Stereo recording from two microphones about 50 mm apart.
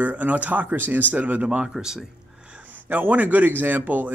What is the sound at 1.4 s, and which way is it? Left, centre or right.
Speech, centre.